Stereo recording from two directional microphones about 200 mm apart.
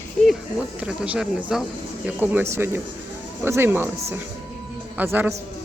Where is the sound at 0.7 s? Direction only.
5° right (ahead or behind).